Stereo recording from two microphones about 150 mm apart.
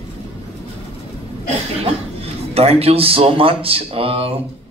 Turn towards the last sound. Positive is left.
turn(degrees=-40)  # may be behind; listen again after turning